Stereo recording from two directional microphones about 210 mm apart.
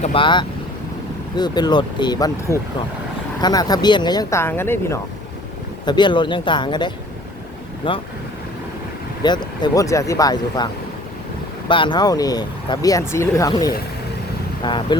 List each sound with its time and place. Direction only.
0.0 s speech: 25° left (ahead or behind)
5.8 s speech: 20° left (ahead or behind)
9.2 s speech: 20° left (ahead or behind)
11.7 s speech: 20° left (ahead or behind)